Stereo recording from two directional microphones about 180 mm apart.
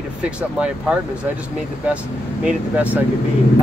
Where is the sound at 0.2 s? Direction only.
5° right (ahead or behind).